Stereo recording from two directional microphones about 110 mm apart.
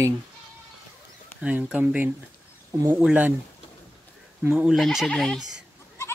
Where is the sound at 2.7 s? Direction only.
25° right (ahead or behind).